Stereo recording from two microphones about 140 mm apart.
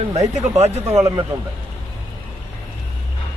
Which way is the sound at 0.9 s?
25° right (ahead or behind).